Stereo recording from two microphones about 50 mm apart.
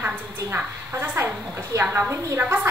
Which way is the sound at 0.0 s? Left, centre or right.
Right.